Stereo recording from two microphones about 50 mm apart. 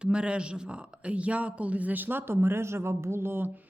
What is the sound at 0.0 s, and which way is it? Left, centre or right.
A woman's voice, right.